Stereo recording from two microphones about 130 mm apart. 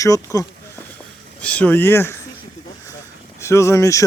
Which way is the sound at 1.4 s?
10° left (ahead or behind).